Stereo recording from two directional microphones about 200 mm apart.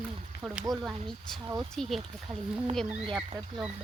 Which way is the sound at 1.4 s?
20° right (ahead or behind).